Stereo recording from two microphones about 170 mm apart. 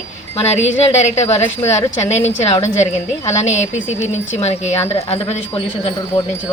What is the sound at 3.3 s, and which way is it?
A woman's voice, 45° left (ahead or behind).